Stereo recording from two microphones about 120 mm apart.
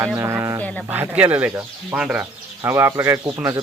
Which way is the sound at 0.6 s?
10° left (ahead or behind).